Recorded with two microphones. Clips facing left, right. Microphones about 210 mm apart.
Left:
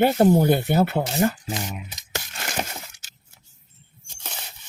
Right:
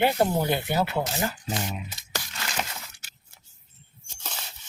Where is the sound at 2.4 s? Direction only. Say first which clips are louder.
Left 4 dB; 50° left (ahead or behind).